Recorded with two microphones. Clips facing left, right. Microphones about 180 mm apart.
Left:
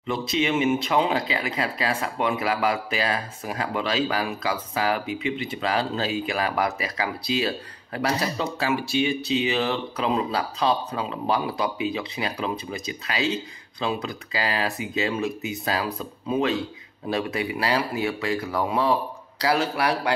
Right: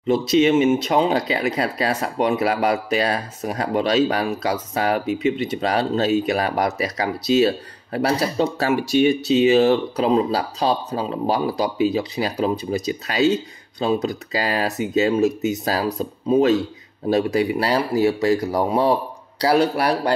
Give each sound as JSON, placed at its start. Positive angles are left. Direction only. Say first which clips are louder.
{"t": 0.0, "sound": "speech", "louder": "right 9 dB", "side_deg": -40}
{"t": 8.5, "sound": "speech", "louder": "right 5 dB", "side_deg": -45}